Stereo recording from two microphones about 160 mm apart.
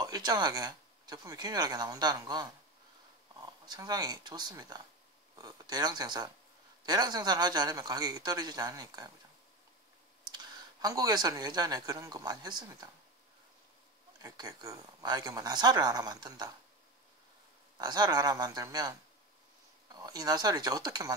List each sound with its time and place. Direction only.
0.0 s speech: 25° right (ahead or behind)
10.3 s speech: 25° right (ahead or behind)
14.2 s speech: 20° right (ahead or behind)
17.7 s speech: 25° right (ahead or behind)